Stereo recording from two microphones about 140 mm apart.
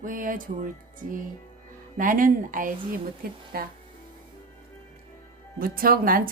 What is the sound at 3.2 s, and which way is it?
Speech, 90° right.